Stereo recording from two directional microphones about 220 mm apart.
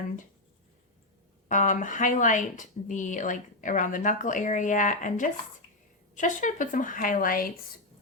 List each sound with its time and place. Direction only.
1.5 s speech: 35° left (ahead or behind)